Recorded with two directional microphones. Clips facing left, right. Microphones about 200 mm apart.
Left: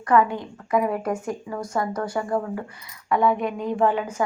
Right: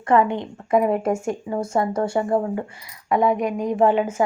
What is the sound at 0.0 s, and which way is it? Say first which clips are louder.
Speech: right 2 dB; 25° right (ahead or behind).